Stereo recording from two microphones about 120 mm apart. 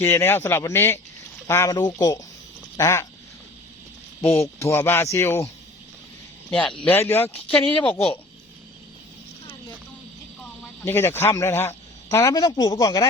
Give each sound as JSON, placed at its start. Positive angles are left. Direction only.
{"t": 0.0, "sound": "speech", "side_deg": 20}
{"t": 4.2, "sound": "speech", "side_deg": 20}
{"t": 6.5, "sound": "speech", "side_deg": 10}
{"t": 6.8, "sound": "speech", "side_deg": 20}
{"t": 10.8, "sound": "speech", "side_deg": 20}